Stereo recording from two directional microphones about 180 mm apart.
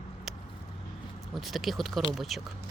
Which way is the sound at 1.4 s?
Centre (ahead or behind).